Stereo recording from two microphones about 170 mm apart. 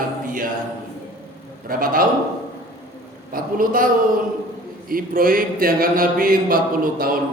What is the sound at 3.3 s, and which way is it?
Speech, 55° right (ahead or behind).